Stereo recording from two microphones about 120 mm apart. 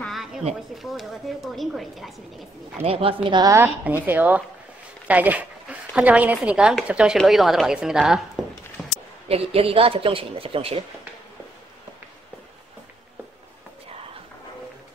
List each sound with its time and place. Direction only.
0.0 s a sound: centre (ahead or behind)
0.7 s a woman's voice: centre (ahead or behind)
2.8 s speech: 55° right (ahead or behind)
3.4 s a woman's voice: 20° right (ahead or behind)
8.8 s a sound: centre (ahead or behind)
9.3 s speech: 55° right (ahead or behind)